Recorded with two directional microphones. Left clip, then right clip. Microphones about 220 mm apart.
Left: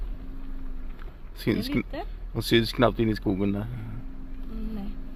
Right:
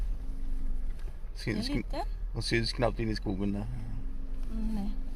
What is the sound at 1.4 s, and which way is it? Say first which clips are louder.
Speech: left 7 dB; 20° left (ahead or behind).